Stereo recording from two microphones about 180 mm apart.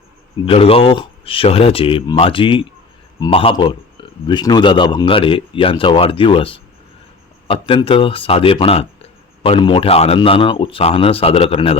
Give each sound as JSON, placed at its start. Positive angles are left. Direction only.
{"t": 0.4, "sound": "a man's voice", "side_deg": 30}